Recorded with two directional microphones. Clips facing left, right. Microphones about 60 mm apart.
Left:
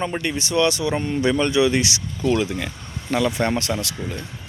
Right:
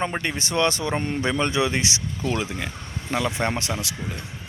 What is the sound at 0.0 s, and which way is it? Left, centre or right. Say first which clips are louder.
Speech: left 2 dB; right.